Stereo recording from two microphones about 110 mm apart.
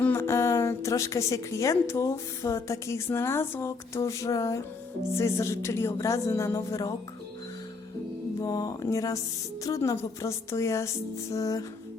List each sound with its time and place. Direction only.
0.0 s a woman's voice: 20° left (ahead or behind)
8.4 s a woman's voice: 35° left (ahead or behind)